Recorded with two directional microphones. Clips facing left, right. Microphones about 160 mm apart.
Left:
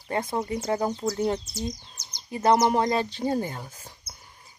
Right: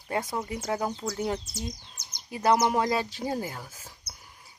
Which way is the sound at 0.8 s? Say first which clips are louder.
Left 4 dB; 10° left (ahead or behind).